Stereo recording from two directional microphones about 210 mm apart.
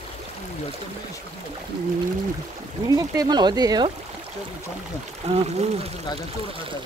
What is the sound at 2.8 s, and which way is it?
Speech, 15° right (ahead or behind).